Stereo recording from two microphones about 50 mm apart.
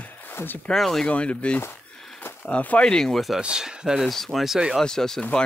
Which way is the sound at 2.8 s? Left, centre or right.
Centre.